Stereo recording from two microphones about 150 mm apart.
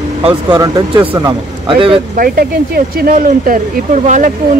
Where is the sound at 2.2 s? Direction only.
80° right; by 4.3 s 55° right (ahead or behind).